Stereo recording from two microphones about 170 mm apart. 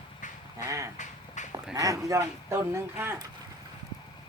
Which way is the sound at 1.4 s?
45° left (ahead or behind).